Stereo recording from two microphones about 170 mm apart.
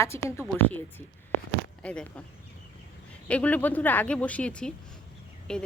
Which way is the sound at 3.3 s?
10° left (ahead or behind).